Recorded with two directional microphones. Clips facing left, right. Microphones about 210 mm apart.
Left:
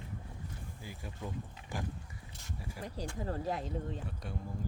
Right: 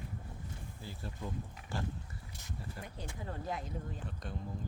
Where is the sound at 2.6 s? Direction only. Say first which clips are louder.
Left 1 dB; 10° left (ahead or behind).